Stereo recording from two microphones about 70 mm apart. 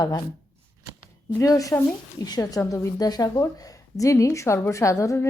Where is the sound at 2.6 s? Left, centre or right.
Left.